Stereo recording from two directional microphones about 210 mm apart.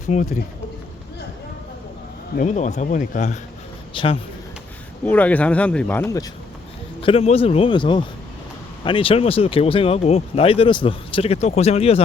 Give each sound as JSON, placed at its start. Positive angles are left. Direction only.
{"t": 0.1, "sound": "speech", "side_deg": 35}
{"t": 2.3, "sound": "speech", "side_deg": 35}
{"t": 5.0, "sound": "speech", "side_deg": 5}
{"t": 7.0, "sound": "speech", "side_deg": 25}